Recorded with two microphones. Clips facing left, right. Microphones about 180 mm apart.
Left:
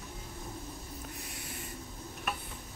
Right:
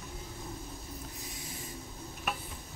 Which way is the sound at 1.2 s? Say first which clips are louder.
Even; 65° left (ahead or behind).